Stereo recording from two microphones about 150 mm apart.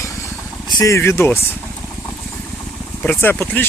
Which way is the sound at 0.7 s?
20° left (ahead or behind).